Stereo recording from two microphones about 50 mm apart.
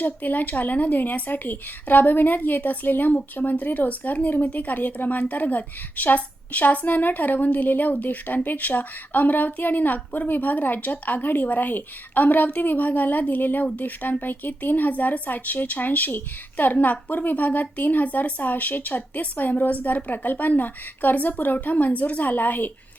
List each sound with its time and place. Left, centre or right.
0.0 s speech: left